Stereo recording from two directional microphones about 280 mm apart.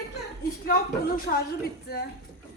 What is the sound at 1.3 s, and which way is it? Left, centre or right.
Speech, left.